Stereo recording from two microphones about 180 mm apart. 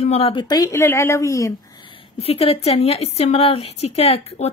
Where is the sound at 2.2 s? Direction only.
30° left (ahead or behind).